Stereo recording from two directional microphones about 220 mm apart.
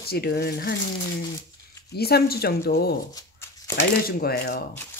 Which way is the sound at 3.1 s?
15° left (ahead or behind).